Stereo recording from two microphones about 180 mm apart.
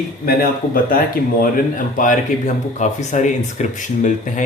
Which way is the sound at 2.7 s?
40° left (ahead or behind).